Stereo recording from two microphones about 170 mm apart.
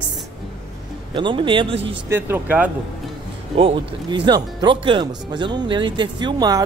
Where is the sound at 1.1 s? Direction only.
30° right (ahead or behind).